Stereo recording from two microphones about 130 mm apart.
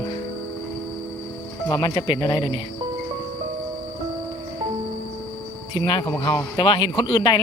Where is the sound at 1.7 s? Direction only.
30° left (ahead or behind).